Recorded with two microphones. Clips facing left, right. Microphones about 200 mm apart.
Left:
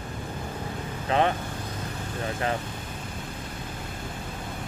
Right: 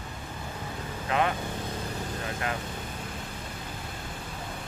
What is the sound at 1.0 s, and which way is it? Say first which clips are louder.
Speech: left 4 dB; 30° left (ahead or behind).